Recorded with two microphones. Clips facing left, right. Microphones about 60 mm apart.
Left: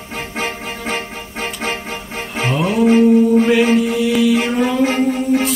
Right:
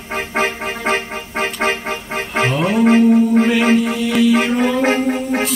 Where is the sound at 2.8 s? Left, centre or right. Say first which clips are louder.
Left 1 dB; right.